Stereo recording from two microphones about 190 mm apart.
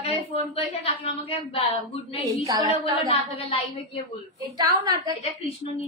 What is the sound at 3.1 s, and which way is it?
Speech, 30° left (ahead or behind).